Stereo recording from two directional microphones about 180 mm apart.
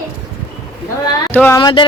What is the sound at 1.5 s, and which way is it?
Speech, 25° left (ahead or behind).